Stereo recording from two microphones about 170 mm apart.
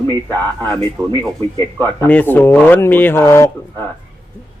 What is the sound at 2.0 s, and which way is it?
Speech, 10° left (ahead or behind).